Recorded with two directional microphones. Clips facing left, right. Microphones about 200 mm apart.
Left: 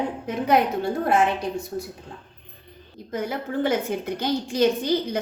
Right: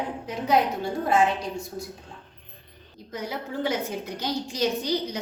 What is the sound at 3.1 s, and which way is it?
A woman's voice, 50° left (ahead or behind).